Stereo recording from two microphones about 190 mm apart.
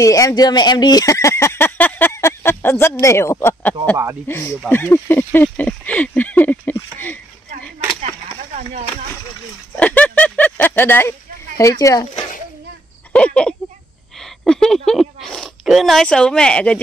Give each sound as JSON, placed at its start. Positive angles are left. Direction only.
{"t": 0.0, "sound": "speech", "side_deg": 15}
{"t": 3.9, "sound": "speech", "side_deg": -15}
{"t": 4.3, "sound": "speech", "side_deg": 10}
{"t": 9.8, "sound": "a sound", "side_deg": 10}
{"t": 13.1, "sound": "a sound", "side_deg": 5}
{"t": 14.2, "sound": "speech", "side_deg": 5}